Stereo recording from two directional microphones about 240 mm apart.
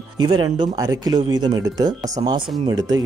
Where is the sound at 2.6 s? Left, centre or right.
Centre.